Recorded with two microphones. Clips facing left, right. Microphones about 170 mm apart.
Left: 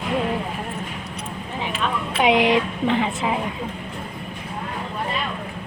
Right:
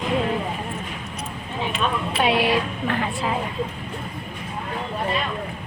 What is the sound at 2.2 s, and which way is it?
Speech, 20° left (ahead or behind).